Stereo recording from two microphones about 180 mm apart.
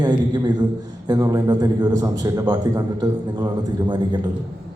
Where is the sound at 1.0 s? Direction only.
20° right (ahead or behind).